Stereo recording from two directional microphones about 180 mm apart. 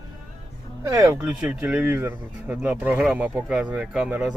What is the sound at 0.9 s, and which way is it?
Speech, 20° right (ahead or behind).